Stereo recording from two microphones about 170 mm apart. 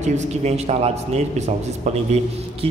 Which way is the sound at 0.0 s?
40° right (ahead or behind).